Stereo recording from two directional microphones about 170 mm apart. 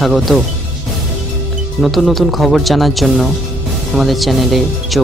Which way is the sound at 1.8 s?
Centre (ahead or behind).